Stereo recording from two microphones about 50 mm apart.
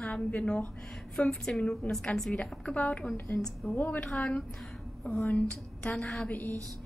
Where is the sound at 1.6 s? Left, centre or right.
Left.